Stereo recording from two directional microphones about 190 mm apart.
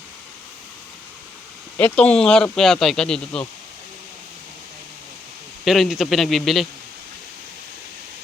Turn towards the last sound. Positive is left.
turn(degrees=0)  # may be behind; listen again after turning